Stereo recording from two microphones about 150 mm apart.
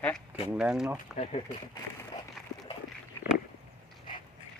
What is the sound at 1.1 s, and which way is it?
Speech, 50° left (ahead or behind).